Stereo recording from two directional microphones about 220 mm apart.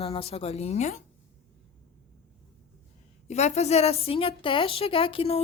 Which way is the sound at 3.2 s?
30° left (ahead or behind).